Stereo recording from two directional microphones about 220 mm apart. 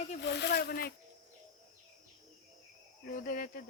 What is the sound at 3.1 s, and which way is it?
Cricket, 40° left (ahead or behind).